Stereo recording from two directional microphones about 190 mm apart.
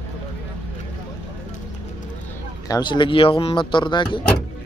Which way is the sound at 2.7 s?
25° left (ahead or behind).